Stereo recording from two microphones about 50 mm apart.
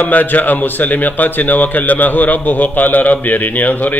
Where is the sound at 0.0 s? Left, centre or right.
Left.